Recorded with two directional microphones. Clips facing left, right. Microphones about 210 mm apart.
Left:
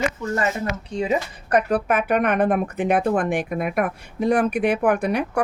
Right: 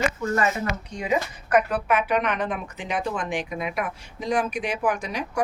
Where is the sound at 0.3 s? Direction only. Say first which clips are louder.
Left 1 dB; 30° left (ahead or behind).